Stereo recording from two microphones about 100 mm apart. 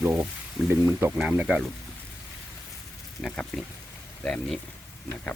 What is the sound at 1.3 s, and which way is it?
Speech, 10° right (ahead or behind).